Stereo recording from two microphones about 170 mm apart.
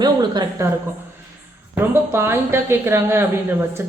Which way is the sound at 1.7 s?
10° right (ahead or behind).